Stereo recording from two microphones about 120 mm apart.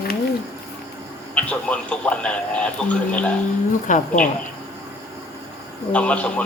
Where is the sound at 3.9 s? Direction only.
90° left.